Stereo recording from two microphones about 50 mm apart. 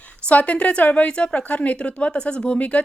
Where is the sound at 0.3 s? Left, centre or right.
Left.